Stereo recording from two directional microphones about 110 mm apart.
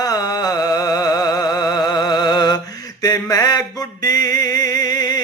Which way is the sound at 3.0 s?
35° left (ahead or behind).